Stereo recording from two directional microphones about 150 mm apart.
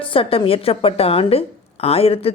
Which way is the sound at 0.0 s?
35° left (ahead or behind).